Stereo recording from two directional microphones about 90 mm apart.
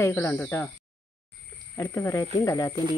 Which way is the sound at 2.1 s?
50° left (ahead or behind).